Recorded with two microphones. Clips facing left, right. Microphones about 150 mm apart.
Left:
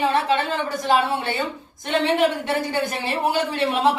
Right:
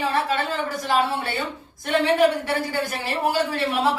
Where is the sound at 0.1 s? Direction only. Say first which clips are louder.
Left 3 dB; 20° left (ahead or behind).